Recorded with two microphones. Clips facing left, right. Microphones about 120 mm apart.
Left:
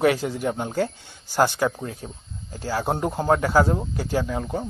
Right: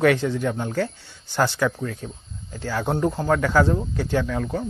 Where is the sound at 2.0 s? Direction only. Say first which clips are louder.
Right 2 dB; 30° left (ahead or behind).